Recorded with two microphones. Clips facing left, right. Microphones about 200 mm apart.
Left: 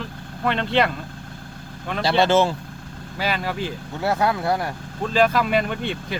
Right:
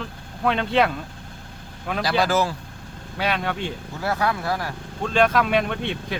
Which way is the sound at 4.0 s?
20° left (ahead or behind).